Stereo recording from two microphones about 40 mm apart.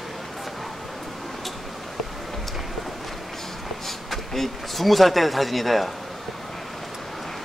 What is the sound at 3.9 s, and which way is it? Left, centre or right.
Speech, centre.